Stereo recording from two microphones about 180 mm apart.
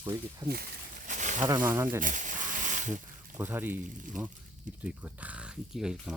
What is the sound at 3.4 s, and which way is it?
Speech, 10° right (ahead or behind).